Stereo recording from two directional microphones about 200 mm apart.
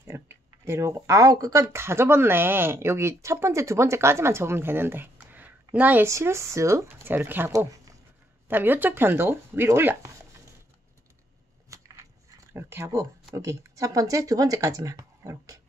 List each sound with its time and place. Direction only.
0.1 s speech: 10° right (ahead or behind)
11.7 s a sound: 15° right (ahead or behind)
12.5 s speech: 10° right (ahead or behind)